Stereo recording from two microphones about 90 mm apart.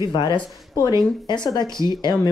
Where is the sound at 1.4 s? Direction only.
55° left (ahead or behind).